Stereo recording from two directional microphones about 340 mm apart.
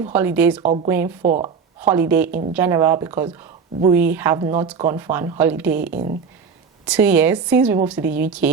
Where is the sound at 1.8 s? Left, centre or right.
Centre.